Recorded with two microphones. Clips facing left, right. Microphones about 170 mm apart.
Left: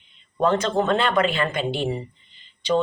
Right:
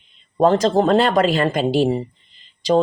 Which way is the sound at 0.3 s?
40° right (ahead or behind).